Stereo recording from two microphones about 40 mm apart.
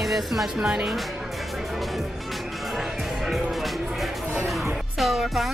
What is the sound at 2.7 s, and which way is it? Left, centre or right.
Music, centre.